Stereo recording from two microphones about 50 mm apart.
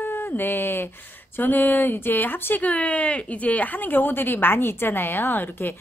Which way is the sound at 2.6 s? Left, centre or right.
Left.